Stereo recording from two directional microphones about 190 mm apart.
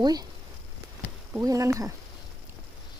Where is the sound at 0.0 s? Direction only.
20° right (ahead or behind).